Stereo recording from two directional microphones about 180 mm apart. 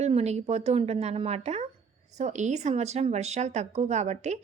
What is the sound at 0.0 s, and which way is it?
A woman's voice, 35° right (ahead or behind).